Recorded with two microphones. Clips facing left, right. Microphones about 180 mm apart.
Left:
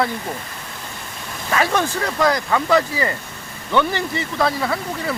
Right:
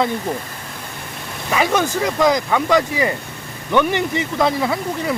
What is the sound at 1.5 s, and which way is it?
Speech, 15° right (ahead or behind).